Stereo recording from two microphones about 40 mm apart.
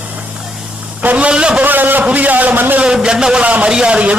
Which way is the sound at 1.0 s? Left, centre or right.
Right.